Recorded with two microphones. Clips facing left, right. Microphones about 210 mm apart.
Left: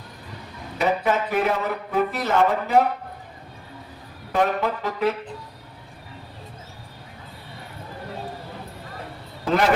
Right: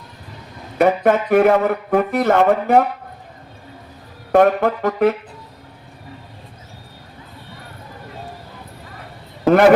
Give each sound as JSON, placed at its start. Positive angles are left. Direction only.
{"t": 0.8, "sound": "speech", "side_deg": -55}
{"t": 4.3, "sound": "music", "side_deg": -55}
{"t": 9.5, "sound": "speech", "side_deg": -55}